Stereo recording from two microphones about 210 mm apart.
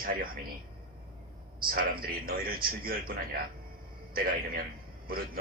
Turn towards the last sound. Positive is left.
turn(degrees=-45)  # may be behind; listen again after turning